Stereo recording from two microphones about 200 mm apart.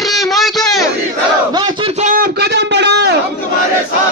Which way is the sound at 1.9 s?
45° right (ahead or behind).